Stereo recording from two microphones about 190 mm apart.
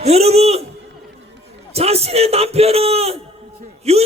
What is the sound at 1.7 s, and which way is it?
A man's voice, 30° right (ahead or behind).